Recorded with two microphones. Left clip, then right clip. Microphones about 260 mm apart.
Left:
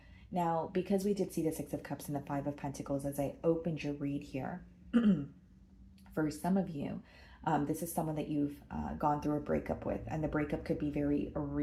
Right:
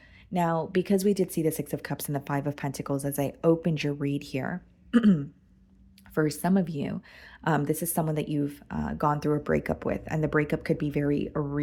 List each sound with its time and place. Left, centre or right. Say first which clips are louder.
0.3 s speech: right 7 dB; right
6.1 s speech: right 8 dB; right